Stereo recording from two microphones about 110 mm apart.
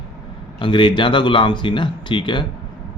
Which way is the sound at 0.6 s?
50° left (ahead or behind).